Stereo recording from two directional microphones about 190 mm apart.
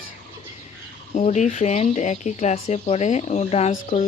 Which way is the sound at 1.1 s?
40° left (ahead or behind).